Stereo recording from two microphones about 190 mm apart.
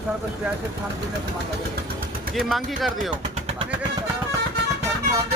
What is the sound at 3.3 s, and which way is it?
Vehicle, 35° right (ahead or behind).